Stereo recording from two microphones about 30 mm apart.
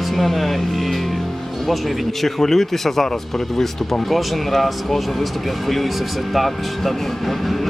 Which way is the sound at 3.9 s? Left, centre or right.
Centre.